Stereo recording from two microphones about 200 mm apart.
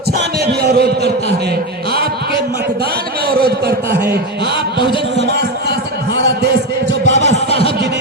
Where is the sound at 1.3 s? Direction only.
55° right (ahead or behind).